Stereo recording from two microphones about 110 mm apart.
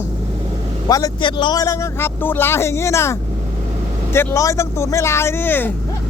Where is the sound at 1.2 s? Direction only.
45° left (ahead or behind).